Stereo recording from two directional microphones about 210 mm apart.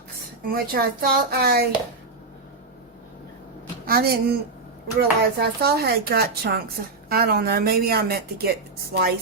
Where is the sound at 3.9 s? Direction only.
45° right (ahead or behind).